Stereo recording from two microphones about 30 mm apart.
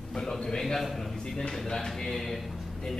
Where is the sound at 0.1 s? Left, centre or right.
Centre.